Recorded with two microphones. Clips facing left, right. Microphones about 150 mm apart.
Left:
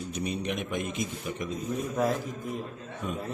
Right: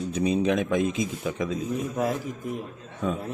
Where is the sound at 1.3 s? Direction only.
90° right.